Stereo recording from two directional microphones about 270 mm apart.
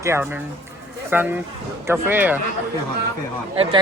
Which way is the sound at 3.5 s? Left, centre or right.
Right.